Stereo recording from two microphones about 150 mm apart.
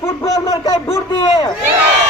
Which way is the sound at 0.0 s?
20° left (ahead or behind).